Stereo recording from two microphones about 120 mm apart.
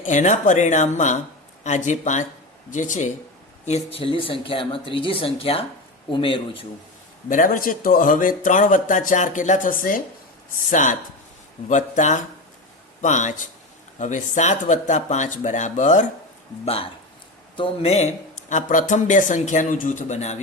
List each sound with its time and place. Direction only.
0.0 s speech: 90° left
3.7 s speech: 55° left (ahead or behind)
7.3 s speech: 90° left
17.6 s speech: 60° left (ahead or behind)